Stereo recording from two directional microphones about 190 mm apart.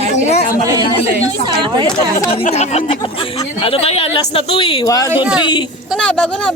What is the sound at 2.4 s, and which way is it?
Speech, 35° left (ahead or behind).